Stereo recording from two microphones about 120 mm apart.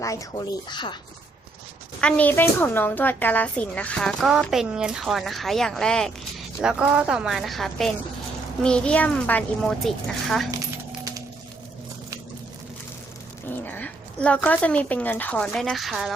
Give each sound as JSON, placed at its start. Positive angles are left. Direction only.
{"t": 0.0, "sound": "speech", "side_deg": 25}
{"t": 0.7, "sound": "speech", "side_deg": 40}
{"t": 2.0, "sound": "speech", "side_deg": 10}
{"t": 6.6, "sound": "a woman's voice", "side_deg": -5}
{"t": 13.7, "sound": "speech", "side_deg": 15}